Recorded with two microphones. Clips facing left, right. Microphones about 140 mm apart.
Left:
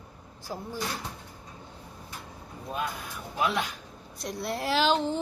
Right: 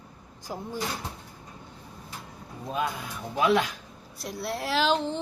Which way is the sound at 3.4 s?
90° right.